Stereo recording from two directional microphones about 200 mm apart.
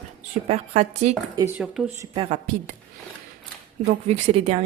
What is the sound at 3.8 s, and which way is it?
Speech, 35° right (ahead or behind).